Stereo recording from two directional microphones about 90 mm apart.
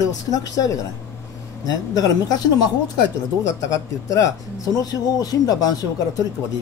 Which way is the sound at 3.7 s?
40° left (ahead or behind).